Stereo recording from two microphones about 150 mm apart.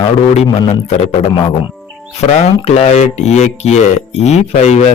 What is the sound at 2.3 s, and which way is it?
Speech, 45° left (ahead or behind).